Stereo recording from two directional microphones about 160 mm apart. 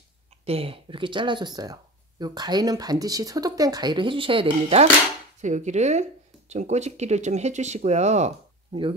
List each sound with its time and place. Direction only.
0.5 s speech: 35° right (ahead or behind)
5.4 s speech: 50° right (ahead or behind)